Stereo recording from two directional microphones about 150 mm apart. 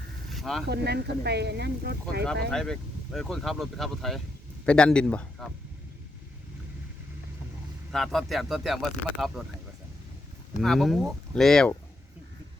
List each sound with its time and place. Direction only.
0.3 s vehicle: centre (ahead or behind)
0.7 s speech: 90° right
2.5 s speech: 5° left (ahead or behind)
7.9 s speech: centre (ahead or behind)
10.6 s speech: centre (ahead or behind)